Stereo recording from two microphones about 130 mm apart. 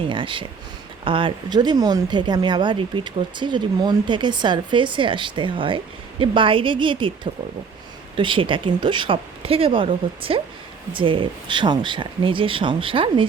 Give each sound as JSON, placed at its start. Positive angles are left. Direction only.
{"t": 0.1, "sound": "speech", "side_deg": -40}
{"t": 8.1, "sound": "speech", "side_deg": -40}